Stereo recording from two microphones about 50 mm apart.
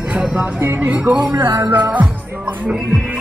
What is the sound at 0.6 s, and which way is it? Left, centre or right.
Speech, right.